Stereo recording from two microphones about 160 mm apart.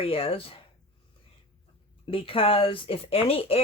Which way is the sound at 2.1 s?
35° left (ahead or behind).